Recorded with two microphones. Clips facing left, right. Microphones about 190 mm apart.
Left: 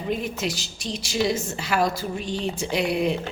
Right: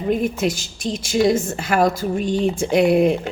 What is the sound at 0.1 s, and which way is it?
Speech, 50° right (ahead or behind).